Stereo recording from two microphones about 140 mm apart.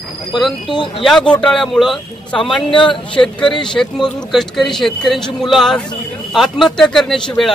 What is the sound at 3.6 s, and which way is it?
Speech, 5° left (ahead or behind).